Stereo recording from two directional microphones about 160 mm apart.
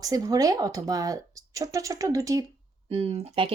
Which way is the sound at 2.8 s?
40° right (ahead or behind).